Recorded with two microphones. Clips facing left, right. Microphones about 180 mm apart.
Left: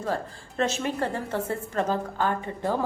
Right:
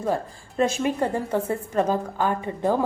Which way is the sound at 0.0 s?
15° right (ahead or behind).